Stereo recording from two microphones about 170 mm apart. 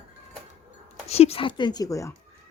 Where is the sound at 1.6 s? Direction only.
25° left (ahead or behind).